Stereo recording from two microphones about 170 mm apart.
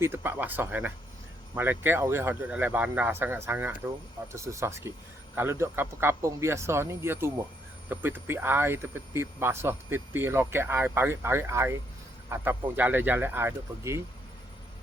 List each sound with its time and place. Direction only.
0.0 s speech: 15° right (ahead or behind)